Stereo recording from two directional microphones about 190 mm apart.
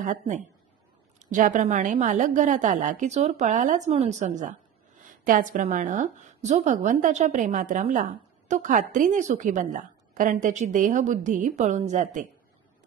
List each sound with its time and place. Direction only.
0.0 s a woman's voice: 40° right (ahead or behind)